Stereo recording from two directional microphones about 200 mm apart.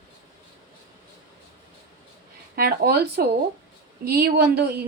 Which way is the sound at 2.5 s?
50° right (ahead or behind).